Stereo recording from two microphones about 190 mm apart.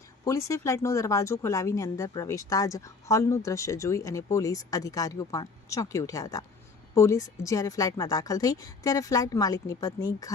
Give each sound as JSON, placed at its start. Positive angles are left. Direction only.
{"t": 0.3, "sound": "speech", "side_deg": 15}